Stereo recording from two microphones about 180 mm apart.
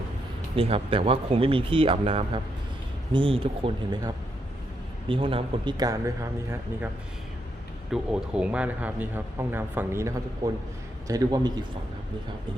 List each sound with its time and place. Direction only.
0.5 s speech: 30° right (ahead or behind)
7.9 s speech: 5° right (ahead or behind); by 11.6 s 25° right (ahead or behind)